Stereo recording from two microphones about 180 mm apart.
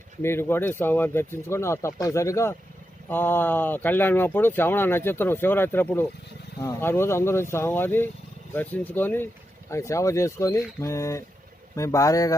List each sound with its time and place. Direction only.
0.2 s speech: 15° left (ahead or behind)